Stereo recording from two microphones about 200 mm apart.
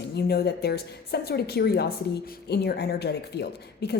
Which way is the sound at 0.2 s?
55° left (ahead or behind).